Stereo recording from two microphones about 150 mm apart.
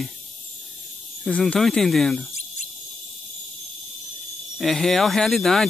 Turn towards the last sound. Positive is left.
turn(degrees=0)  # may be behind; listen again after turning